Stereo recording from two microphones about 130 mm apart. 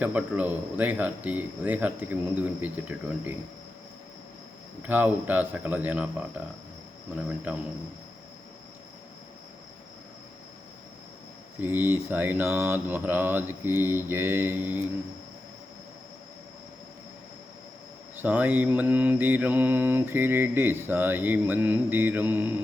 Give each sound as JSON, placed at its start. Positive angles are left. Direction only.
{"t": 0.0, "sound": "mantra", "side_deg": -10}
{"t": 4.8, "sound": "mantra", "side_deg": -15}
{"t": 11.6, "sound": "mantra", "side_deg": -15}
{"t": 18.2, "sound": "mantra", "side_deg": -15}